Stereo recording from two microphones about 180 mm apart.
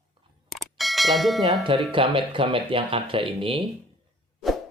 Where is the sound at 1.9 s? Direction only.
30° right (ahead or behind).